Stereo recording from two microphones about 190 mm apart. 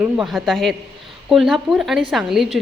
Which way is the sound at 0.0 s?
Centre (ahead or behind).